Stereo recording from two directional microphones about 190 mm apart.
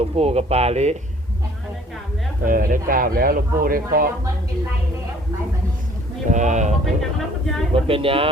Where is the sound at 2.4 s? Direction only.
45° right (ahead or behind).